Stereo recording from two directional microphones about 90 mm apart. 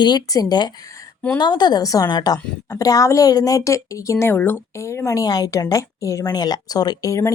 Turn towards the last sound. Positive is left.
turn(degrees=40)  # may be behind; listen again after turning